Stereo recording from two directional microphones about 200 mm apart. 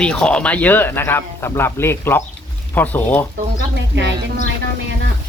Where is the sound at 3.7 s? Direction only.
65° right (ahead or behind).